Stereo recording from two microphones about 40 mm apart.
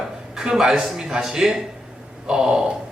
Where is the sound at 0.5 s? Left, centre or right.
Centre.